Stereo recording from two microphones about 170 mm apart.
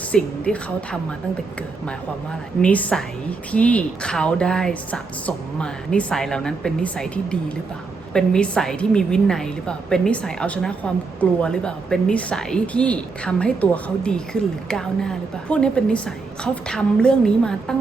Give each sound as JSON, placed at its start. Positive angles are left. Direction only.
{"t": 0.1, "sound": "a woman's voice", "side_deg": 5}
{"t": 2.6, "sound": "a woman's voice", "side_deg": 10}